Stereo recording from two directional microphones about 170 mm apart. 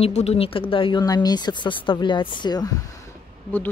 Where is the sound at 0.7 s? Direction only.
30° left (ahead or behind).